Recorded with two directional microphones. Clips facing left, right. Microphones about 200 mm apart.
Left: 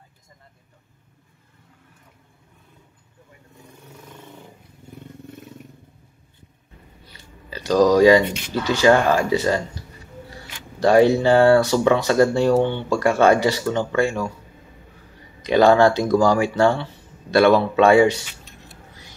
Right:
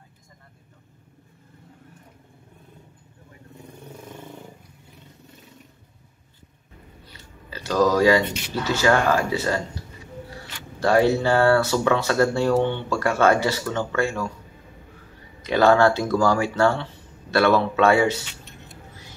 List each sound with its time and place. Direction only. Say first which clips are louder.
7.4 s speech: left 4 dB; 15° left (ahead or behind)
10.8 s speech: left 4 dB; 15° left (ahead or behind)
15.4 s speech: left 3 dB; 15° left (ahead or behind)